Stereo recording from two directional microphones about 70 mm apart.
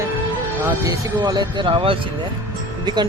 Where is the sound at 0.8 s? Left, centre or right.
Right.